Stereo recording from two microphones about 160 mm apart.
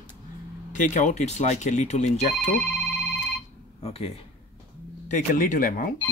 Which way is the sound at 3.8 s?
40° left (ahead or behind).